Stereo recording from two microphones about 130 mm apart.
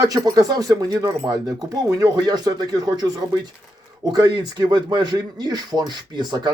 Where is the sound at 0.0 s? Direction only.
30° right (ahead or behind).